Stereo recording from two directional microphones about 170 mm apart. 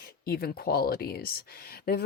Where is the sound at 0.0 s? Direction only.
65° left (ahead or behind).